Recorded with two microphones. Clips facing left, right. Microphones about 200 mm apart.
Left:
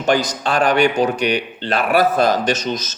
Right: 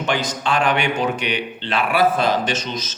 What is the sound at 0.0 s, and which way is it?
Speech, 40° left (ahead or behind).